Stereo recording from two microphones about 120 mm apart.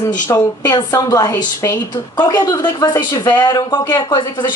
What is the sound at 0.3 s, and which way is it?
A woman's voice, 30° left (ahead or behind).